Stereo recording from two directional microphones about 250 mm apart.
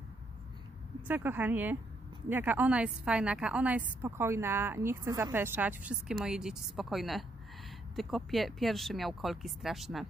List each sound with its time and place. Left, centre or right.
1.0 s a woman's voice: centre